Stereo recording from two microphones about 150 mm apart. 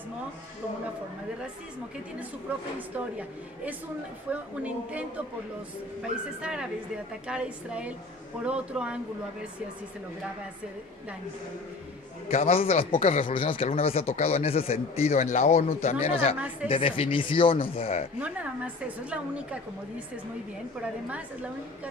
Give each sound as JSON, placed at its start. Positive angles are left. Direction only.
{"t": 4.3, "sound": "a woman's voice", "side_deg": -10}
{"t": 6.4, "sound": "a woman's voice", "side_deg": -5}
{"t": 12.3, "sound": "speech", "side_deg": 45}
{"t": 18.2, "sound": "a woman's voice", "side_deg": -10}